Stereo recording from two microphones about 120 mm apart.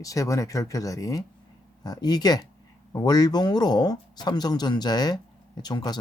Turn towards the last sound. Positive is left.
turn(degrees=35)  # may be behind; listen again after turning